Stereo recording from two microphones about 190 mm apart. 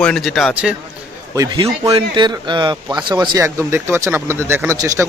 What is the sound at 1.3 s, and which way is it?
Speech, 20° right (ahead or behind).